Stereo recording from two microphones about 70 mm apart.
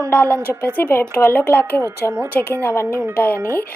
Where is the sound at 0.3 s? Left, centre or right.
Right.